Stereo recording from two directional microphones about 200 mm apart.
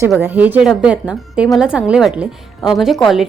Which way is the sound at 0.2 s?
10° right (ahead or behind).